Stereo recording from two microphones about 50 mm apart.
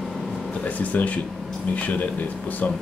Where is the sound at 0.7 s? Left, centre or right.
Left.